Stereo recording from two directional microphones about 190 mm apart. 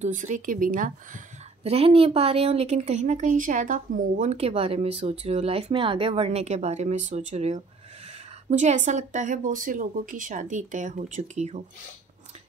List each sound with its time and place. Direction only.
0.0 s a woman's voice: 40° right (ahead or behind)